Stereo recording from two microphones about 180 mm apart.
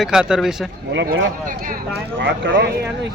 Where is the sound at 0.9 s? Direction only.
70° right (ahead or behind).